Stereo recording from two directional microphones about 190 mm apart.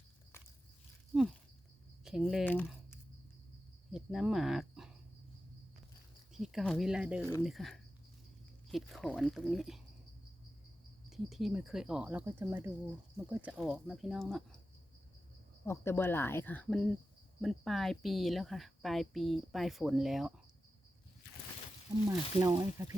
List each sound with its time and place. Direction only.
1.1 s a woman's voice: 5° right (ahead or behind)
3.9 s speech: centre (ahead or behind)
6.3 s a woman's voice: centre (ahead or behind)
7.2 s speech: 10° left (ahead or behind)
7.4 s a woman's voice: centre (ahead or behind)
11.1 s a woman's voice: centre (ahead or behind)
15.6 s a woman's voice: 15° left (ahead or behind)
22.1 s speech: 20° right (ahead or behind)